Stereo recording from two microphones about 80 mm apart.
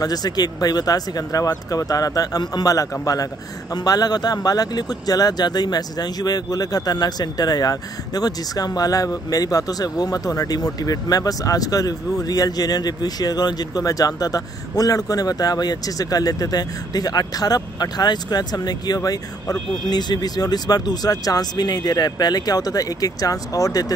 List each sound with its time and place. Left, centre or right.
0.0 s speech: left
19.9 s speech: left